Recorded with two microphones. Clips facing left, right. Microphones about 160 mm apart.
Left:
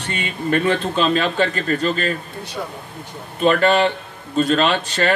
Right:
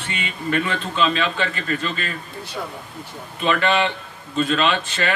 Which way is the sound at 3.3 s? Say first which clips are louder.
Left 5 dB; 45° left (ahead or behind).